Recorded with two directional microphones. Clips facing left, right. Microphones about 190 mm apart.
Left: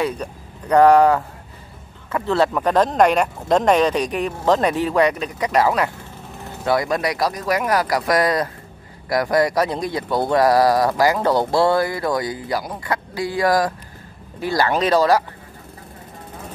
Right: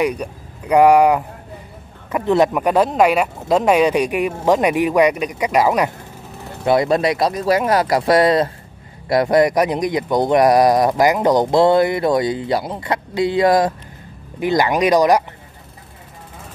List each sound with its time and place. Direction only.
0.0 s speech: 15° right (ahead or behind)